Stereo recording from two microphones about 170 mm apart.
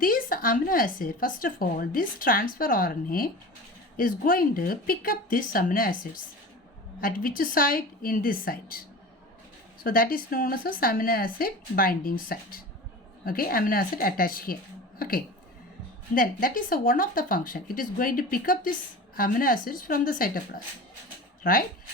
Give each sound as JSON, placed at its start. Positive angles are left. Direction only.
{"t": 0.0, "sound": "speech", "side_deg": 55}
{"t": 9.8, "sound": "speech", "side_deg": 60}